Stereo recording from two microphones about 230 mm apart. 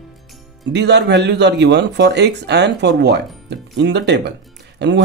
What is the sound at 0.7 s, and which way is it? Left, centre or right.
Speech, right.